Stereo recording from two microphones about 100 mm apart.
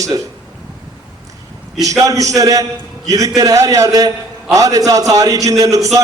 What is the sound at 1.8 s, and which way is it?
A man's voice, 35° right (ahead or behind).